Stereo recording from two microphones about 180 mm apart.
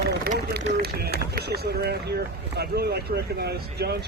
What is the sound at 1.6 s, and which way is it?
Speech, 65° right (ahead or behind).